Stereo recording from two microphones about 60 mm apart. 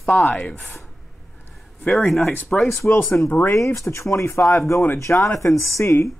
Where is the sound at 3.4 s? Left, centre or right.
Left.